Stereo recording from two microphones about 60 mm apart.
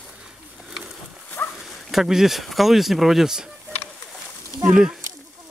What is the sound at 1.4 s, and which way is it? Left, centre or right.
Dog, left.